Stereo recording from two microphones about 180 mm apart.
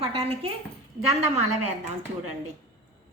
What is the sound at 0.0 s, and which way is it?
A woman's voice, 35° right (ahead or behind).